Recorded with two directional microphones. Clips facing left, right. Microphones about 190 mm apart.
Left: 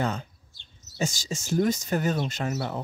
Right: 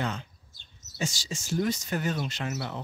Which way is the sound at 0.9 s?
40° left (ahead or behind).